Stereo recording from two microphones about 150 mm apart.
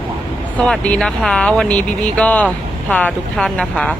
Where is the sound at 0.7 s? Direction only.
5° left (ahead or behind).